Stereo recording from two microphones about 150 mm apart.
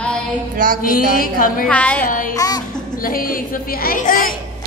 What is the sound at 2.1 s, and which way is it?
Speech, 65° left (ahead or behind).